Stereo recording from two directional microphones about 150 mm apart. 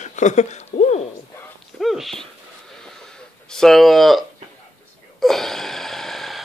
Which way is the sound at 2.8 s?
5° left (ahead or behind).